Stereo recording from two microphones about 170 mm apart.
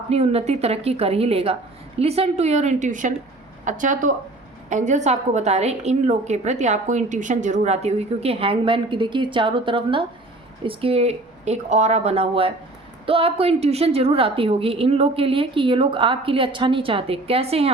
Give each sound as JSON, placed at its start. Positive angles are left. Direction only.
{"t": 0.1, "sound": "a woman's voice", "side_deg": -35}